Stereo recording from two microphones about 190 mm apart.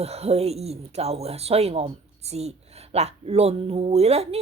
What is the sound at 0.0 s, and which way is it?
Speech, 35° right (ahead or behind).